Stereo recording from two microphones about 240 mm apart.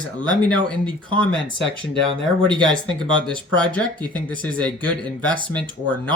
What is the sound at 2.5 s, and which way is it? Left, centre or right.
Speech, centre.